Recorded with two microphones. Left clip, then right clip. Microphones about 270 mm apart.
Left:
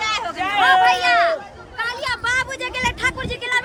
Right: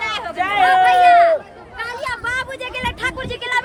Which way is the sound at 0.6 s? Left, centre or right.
Centre.